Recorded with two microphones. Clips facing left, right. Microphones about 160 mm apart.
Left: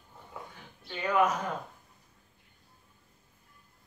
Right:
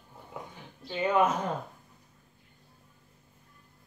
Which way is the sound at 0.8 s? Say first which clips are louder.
Right 2 dB; 25° right (ahead or behind).